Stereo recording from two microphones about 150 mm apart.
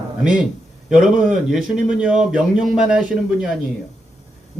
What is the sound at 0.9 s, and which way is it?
Speech, 5° right (ahead or behind).